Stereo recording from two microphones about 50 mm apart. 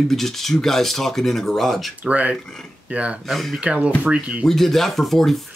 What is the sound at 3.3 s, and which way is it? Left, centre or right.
Speech, centre.